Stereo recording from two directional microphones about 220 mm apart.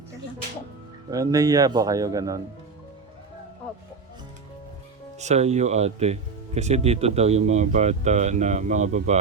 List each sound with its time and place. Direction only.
1.1 s speech: 15° right (ahead or behind)
5.2 s speech: 30° right (ahead or behind)